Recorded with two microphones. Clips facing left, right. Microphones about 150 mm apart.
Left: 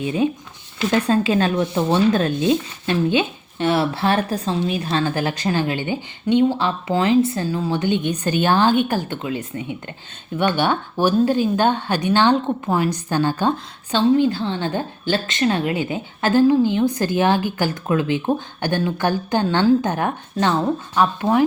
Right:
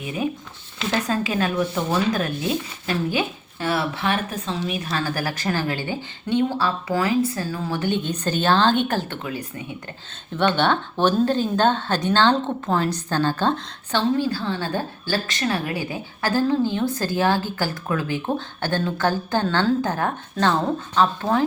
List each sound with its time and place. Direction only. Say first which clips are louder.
0.0 s a woman's voice: left 6 dB; 25° left (ahead or behind)